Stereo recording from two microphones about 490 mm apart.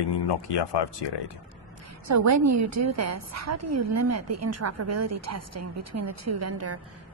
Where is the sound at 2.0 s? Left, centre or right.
Right.